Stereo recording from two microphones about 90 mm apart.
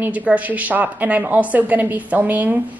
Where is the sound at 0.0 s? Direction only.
15° right (ahead or behind).